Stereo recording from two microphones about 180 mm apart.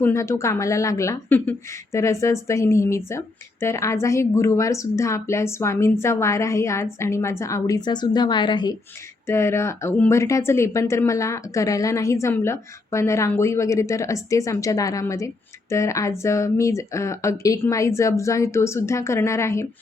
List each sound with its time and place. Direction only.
0.0 s speech: 15° left (ahead or behind)
9.2 s speech: 15° left (ahead or behind)